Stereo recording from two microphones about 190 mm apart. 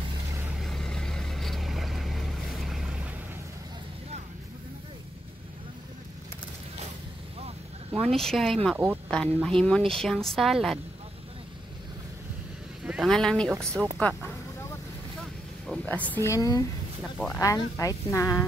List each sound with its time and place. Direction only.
0.5 s vehicle: centre (ahead or behind)
7.9 s a woman's voice: centre (ahead or behind)
9.1 s a woman's voice: 5° left (ahead or behind)
12.8 s speech: 5° right (ahead or behind)
15.6 s a sound: 5° left (ahead or behind)
16.1 s speech: 15° left (ahead or behind)